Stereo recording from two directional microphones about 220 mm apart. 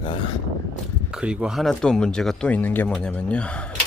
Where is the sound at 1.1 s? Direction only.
5° right (ahead or behind).